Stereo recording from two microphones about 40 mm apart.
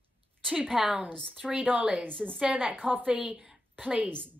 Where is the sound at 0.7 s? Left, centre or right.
Centre.